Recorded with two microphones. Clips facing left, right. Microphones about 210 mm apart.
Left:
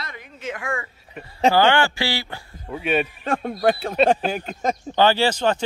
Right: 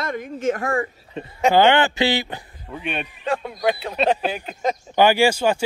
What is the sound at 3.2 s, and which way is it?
Speech, 50° left (ahead or behind).